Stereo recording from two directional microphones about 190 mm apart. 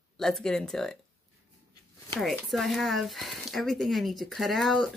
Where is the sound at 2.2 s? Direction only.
Centre (ahead or behind).